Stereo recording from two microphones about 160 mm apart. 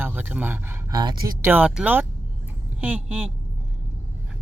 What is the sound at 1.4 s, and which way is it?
Speech, 15° right (ahead or behind).